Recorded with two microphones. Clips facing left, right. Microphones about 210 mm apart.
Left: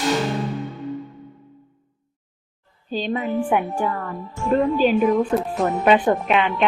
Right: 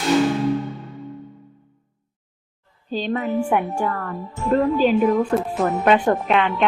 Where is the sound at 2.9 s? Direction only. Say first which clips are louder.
Right 1 dB; 15° left (ahead or behind).